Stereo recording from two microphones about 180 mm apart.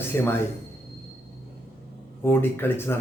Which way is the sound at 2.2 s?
10° left (ahead or behind).